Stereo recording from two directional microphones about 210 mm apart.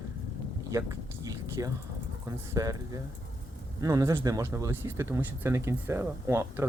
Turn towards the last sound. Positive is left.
turn(degrees=-10)  # may be behind; listen again after turning